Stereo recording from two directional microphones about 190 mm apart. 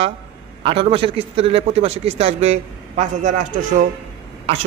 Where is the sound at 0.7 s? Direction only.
30° right (ahead or behind).